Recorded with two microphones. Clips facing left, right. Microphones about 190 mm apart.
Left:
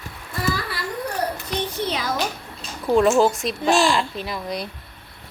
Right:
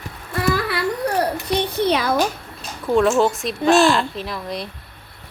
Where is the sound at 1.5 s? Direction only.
65° right (ahead or behind).